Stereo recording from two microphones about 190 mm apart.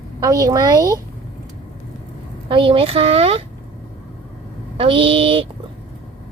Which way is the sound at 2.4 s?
25° right (ahead or behind).